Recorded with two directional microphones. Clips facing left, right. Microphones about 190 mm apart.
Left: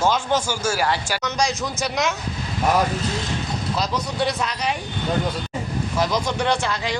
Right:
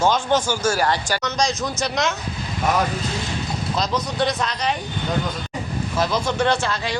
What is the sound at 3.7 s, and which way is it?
Speech, 10° left (ahead or behind).